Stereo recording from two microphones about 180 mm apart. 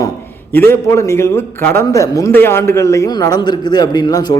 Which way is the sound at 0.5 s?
15° left (ahead or behind).